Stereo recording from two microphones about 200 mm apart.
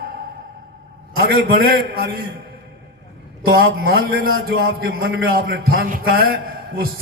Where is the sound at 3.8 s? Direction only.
50° right (ahead or behind).